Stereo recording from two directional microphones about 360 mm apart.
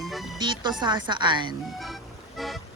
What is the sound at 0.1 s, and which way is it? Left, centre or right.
Music, centre.